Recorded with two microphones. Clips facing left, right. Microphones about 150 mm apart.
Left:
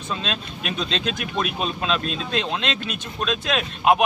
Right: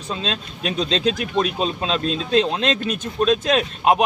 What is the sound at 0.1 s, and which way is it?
Speech, 30° right (ahead or behind).